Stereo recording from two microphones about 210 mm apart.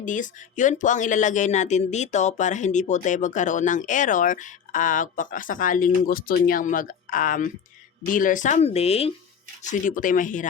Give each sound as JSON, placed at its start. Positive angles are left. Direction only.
{"t": 0.0, "sound": "speech", "side_deg": 40}